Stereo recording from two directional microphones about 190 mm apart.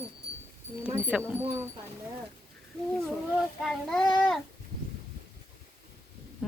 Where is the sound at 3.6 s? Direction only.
5° left (ahead or behind).